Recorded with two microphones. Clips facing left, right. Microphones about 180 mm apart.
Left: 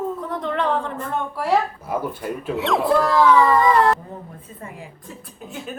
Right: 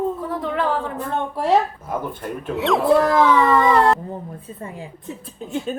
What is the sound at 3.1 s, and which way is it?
Speech, 25° right (ahead or behind).